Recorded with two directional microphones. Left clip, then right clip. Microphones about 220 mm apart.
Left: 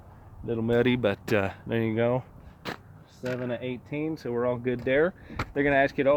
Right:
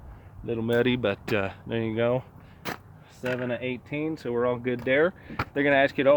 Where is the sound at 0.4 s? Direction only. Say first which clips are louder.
Even; 25° left (ahead or behind).